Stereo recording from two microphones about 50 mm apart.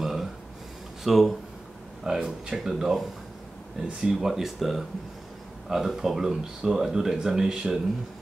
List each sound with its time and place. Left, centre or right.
0.0 s a sound: centre
1.0 s speech: centre
2.0 s speech: centre
4.3 s speech: centre